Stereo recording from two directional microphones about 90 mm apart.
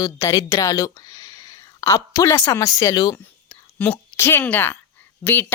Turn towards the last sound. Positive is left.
turn(degrees=20)  # may be behind; listen again after turning